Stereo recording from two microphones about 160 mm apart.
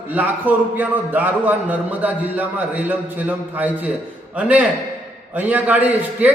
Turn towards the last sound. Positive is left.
turn(degrees=-10)  # may be behind; listen again after turning